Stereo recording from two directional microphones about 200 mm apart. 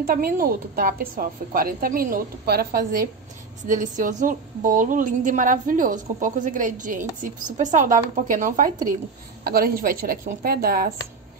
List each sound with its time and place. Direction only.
0.0 s a woman's voice: 45° right (ahead or behind)